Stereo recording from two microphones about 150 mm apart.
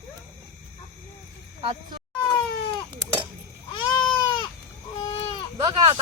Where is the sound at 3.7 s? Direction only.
35° left (ahead or behind).